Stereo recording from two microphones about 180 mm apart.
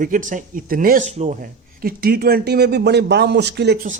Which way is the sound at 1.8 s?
55° right (ahead or behind).